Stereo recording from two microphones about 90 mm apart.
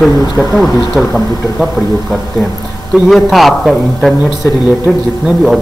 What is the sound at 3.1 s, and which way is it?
Speech, centre (ahead or behind).